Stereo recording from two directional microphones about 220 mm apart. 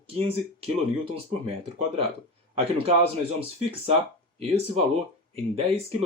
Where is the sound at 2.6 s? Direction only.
25° right (ahead or behind).